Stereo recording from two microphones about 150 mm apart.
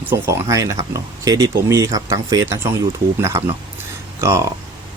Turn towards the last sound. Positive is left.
turn(degrees=-20)  # may be behind; listen again after turning